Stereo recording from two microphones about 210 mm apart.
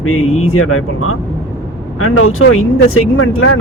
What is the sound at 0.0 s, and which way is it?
Speech, 90° left.